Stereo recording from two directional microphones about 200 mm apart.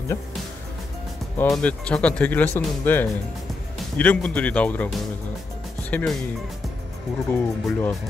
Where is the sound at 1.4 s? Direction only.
5° left (ahead or behind).